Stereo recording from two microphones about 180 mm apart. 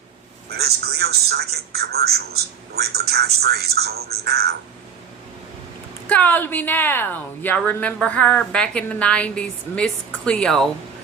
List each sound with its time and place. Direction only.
0.5 s a man's voice: 60° right (ahead or behind)
6.1 s a woman's voice: 10° left (ahead or behind)